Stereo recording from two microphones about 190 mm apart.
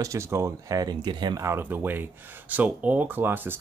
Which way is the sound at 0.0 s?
15° right (ahead or behind).